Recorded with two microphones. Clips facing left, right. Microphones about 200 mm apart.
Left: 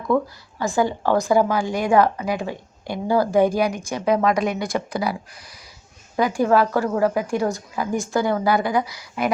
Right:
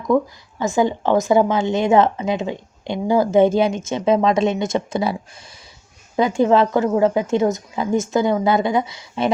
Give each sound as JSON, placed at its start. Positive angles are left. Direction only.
{"t": 0.1, "sound": "a woman's voice", "side_deg": -15}
{"t": 6.1, "sound": "a woman's voice", "side_deg": -25}